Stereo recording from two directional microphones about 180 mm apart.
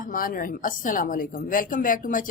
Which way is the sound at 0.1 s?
50° left (ahead or behind).